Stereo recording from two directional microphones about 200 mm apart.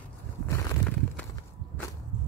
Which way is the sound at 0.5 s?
10° left (ahead or behind).